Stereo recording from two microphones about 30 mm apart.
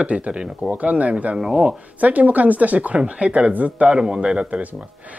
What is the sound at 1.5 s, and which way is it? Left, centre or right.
Speech, right.